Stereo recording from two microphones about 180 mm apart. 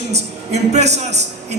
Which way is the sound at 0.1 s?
40° right (ahead or behind).